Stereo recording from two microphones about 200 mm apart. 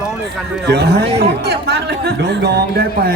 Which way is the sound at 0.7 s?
55° right (ahead or behind).